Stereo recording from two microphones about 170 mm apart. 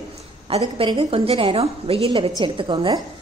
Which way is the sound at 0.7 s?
35° right (ahead or behind).